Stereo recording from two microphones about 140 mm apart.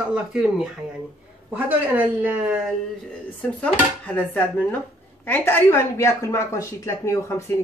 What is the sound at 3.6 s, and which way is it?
Speech, 10° left (ahead or behind).